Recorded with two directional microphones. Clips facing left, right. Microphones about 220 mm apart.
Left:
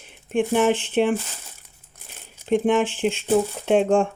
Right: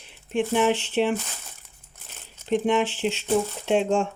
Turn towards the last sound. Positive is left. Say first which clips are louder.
# left 4 dB
turn(degrees=55)  # may be behind; listen again after turning